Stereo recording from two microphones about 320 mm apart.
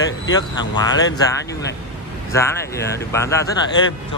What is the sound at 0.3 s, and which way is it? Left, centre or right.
Speech, centre.